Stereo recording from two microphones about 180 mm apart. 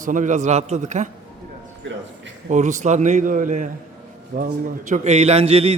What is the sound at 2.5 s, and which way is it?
A man's voice, 40° right (ahead or behind).